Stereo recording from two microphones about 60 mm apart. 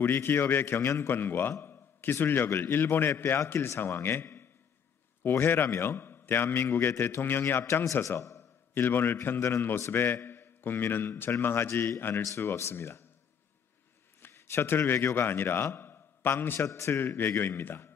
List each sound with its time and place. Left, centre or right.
0.0 s a man's voice: left
3.8 s a man's voice: left
7.8 s a man's voice: left
8.7 s a man's voice: left
14.2 s a man's voice: left
16.6 s a man's voice: left
17.0 s a man's voice: left